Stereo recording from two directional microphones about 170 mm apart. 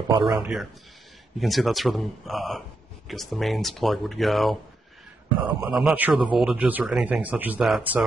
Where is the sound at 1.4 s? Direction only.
Centre (ahead or behind).